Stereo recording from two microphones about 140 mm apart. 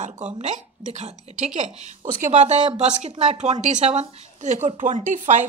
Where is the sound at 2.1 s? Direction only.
60° right (ahead or behind).